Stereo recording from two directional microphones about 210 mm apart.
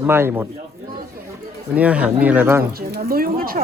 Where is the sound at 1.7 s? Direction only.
5° right (ahead or behind).